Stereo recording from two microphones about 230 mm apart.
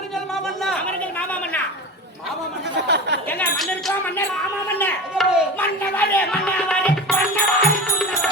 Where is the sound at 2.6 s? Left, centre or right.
Right.